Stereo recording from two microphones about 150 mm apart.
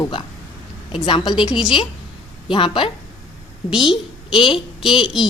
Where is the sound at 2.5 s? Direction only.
35° left (ahead or behind).